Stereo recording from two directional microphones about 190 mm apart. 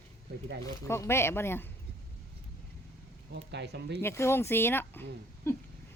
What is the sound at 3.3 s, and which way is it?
Speech, 65° right (ahead or behind).